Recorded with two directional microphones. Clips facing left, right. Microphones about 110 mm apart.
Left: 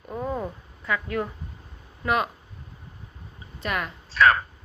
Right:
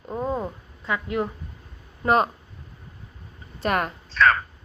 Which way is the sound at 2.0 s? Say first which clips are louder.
Right 5 dB; 35° right (ahead or behind).